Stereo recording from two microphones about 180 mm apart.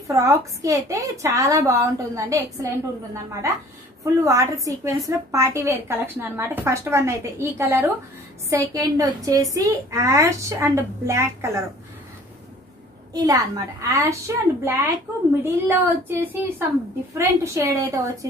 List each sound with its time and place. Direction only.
0.1 s a woman's voice: 20° right (ahead or behind)
4.0 s a woman's voice: 15° right (ahead or behind)
13.1 s a woman's voice: 20° right (ahead or behind)